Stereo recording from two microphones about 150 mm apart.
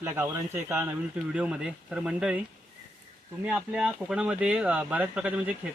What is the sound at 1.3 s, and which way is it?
Speech, 5° right (ahead or behind).